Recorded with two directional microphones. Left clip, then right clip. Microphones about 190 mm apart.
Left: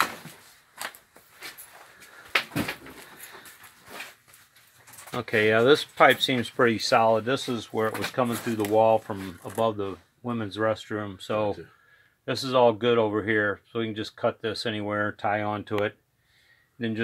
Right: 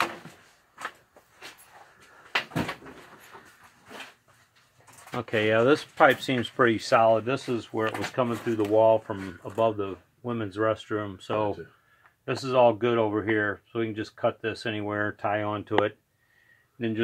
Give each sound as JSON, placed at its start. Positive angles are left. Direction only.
{"t": 5.1, "sound": "speech", "side_deg": 15}